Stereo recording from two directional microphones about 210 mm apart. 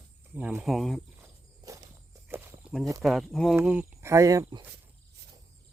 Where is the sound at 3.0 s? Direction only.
Centre (ahead or behind); by 4.6 s 15° right (ahead or behind).